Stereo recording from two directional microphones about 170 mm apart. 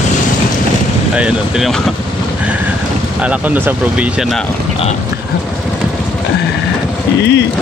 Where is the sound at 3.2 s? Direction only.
10° right (ahead or behind).